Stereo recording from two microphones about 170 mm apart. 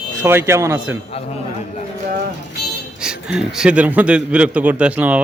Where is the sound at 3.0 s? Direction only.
5° right (ahead or behind).